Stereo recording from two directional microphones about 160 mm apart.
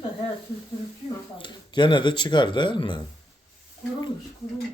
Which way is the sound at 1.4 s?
30° left (ahead or behind).